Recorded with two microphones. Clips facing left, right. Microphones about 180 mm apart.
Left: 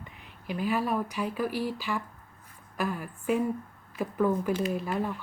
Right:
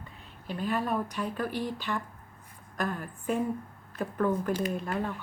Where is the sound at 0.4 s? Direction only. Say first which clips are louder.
Left 2 dB; 10° left (ahead or behind).